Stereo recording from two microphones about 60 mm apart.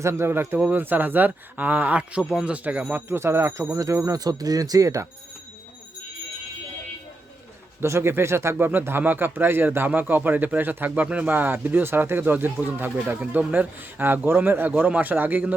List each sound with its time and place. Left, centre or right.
0.0 s speech: right
2.0 s speech: centre
2.9 s speech: right
4.0 s speech: right
7.8 s speech: right
8.5 s speech: right
11.3 s speech: right